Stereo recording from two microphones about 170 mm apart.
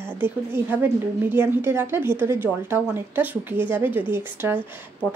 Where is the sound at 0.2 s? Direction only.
15° right (ahead or behind).